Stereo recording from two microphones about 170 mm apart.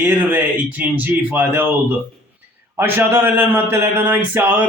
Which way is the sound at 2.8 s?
15° right (ahead or behind).